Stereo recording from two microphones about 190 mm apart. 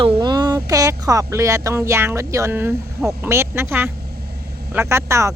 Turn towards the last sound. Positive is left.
turn(degrees=-15)  # may be behind; listen again after turning